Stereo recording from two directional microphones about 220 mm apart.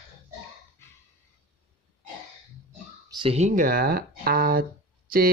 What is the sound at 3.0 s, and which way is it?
Speech, 20° right (ahead or behind).